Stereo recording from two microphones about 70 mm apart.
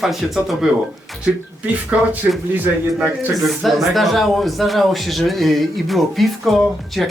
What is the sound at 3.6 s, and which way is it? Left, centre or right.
Speech, centre.